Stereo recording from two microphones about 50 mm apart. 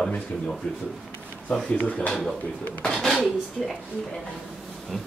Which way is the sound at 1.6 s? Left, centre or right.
Left.